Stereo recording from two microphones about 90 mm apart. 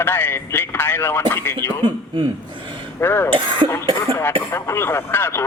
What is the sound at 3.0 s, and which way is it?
A man's voice, 25° left (ahead or behind).